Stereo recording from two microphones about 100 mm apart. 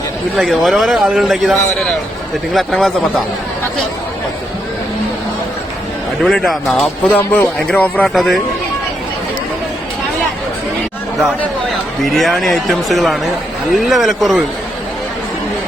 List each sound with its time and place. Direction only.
0.3 s a man's voice: centre (ahead or behind)
6.2 s a man's voice: 5° left (ahead or behind)
7.1 s speech: 20° left (ahead or behind)
8.1 s a man's voice: centre (ahead or behind)
12.0 s a man's voice: centre (ahead or behind)